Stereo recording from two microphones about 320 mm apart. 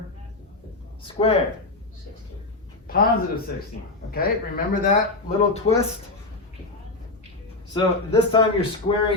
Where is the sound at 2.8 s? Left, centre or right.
Left.